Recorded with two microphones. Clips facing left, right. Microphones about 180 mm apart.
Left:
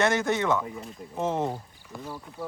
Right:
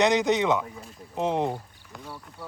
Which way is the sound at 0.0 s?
15° right (ahead or behind).